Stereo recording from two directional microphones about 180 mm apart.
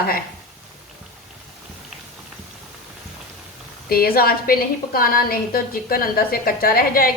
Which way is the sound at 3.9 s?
55° left (ahead or behind).